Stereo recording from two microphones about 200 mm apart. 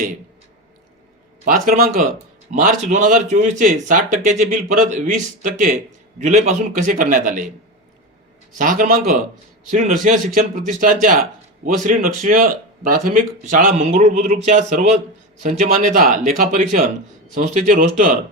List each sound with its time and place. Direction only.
1.5 s a man's voice: 40° right (ahead or behind)
8.5 s a man's voice: 40° right (ahead or behind)